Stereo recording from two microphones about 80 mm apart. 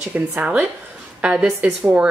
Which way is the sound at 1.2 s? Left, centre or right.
Centre.